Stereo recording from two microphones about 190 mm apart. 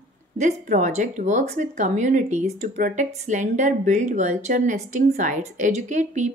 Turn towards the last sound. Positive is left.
turn(degrees=-40)  # may be behind; listen again after turning